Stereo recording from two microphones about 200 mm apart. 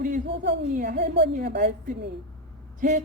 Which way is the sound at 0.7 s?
55° right (ahead or behind).